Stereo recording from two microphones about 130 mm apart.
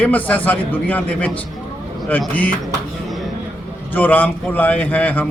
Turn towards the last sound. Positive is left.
turn(degrees=10)  # may be behind; listen again after turning